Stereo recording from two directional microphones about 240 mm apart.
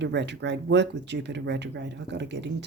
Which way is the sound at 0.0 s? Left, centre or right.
Right.